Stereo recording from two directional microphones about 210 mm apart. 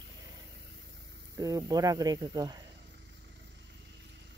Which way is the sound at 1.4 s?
15° right (ahead or behind).